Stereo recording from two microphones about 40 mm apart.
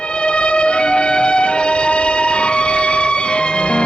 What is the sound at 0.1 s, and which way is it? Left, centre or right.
Music, left.